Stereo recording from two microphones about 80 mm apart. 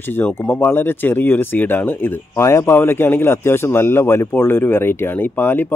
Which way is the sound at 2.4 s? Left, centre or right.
Left.